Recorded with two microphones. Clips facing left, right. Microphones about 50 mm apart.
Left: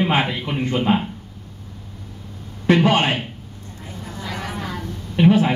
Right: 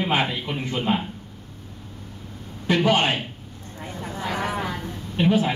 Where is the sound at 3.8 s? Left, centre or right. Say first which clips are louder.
Right 3 dB; right.